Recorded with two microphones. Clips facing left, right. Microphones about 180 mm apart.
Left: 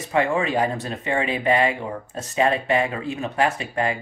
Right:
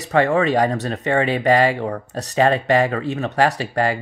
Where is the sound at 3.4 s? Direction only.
40° right (ahead or behind).